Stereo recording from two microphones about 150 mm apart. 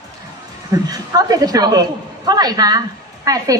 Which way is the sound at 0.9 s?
25° right (ahead or behind).